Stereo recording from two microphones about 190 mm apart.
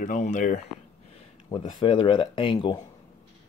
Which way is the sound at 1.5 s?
25° left (ahead or behind).